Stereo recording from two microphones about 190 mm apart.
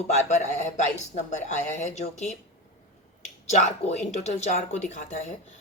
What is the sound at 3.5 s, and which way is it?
Speech, 35° left (ahead or behind).